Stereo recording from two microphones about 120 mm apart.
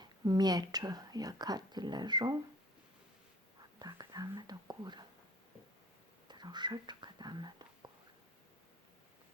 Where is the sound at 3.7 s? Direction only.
35° right (ahead or behind).